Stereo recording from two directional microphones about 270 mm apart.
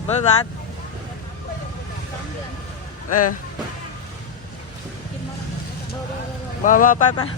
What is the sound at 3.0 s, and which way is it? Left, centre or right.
Speech, left.